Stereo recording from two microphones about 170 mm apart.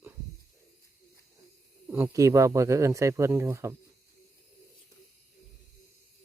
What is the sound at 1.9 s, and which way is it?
Speech, 15° right (ahead or behind).